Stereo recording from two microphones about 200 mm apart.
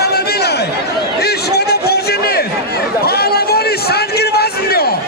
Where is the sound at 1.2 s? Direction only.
55° left (ahead or behind).